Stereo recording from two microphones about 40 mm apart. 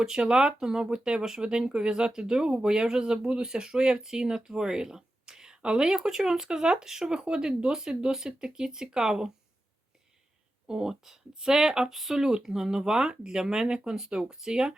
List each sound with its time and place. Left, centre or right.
0.0 s speech: centre
10.7 s speech: centre